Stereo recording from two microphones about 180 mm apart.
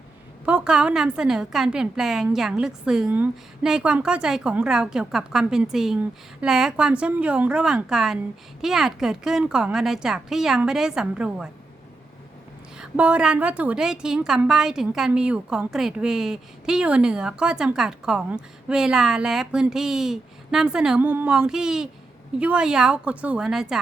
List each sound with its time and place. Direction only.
0.4 s a woman's voice: 5° right (ahead or behind)
12.7 s a woman's voice: 5° right (ahead or behind)